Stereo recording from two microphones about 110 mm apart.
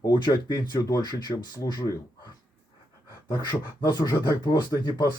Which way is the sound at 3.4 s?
40° left (ahead or behind).